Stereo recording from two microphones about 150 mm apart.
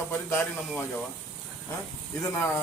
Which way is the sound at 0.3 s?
15° left (ahead or behind).